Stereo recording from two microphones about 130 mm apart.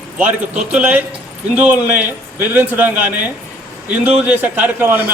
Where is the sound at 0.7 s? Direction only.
10° right (ahead or behind).